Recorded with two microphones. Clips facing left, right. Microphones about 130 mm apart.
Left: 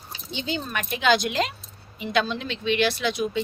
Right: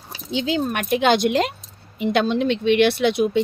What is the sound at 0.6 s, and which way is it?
Speech, 60° right (ahead or behind).